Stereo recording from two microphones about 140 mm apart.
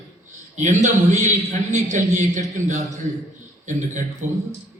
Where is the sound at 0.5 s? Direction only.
60° right (ahead or behind).